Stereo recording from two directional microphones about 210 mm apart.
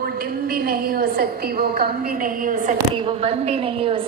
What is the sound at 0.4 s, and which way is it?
A woman's voice, 45° right (ahead or behind).